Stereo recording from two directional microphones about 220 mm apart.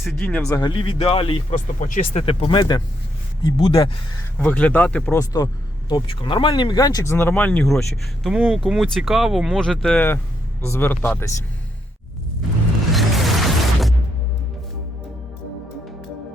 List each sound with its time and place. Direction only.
0.0 s speech: 5° left (ahead or behind); by 1.5 s 25° left (ahead or behind)
1.5 s speech: 35° left (ahead or behind)
4.4 s speech: 10° left (ahead or behind)
12.9 s music: centre (ahead or behind)